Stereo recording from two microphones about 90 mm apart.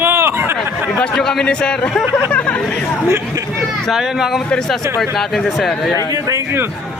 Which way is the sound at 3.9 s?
5° right (ahead or behind).